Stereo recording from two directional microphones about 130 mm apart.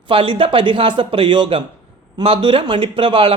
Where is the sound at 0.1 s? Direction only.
40° right (ahead or behind).